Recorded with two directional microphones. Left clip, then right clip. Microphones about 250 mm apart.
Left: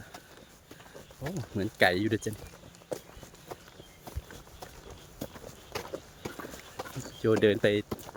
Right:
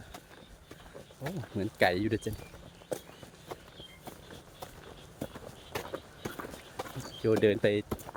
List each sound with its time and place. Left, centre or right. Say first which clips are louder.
1.2 s speech: left 2 dB; centre
3.5 s walk: even; centre
5.2 s run: even; centre
7.2 s speech: left 2 dB; centre